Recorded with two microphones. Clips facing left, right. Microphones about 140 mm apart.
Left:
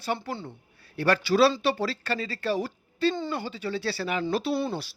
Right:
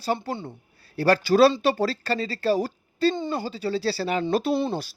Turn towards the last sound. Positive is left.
turn(degrees=-20)  # may be behind; listen again after turning